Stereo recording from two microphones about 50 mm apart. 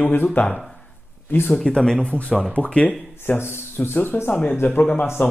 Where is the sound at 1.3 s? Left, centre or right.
Left.